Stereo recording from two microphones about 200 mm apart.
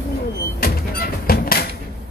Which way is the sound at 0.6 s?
50° left (ahead or behind).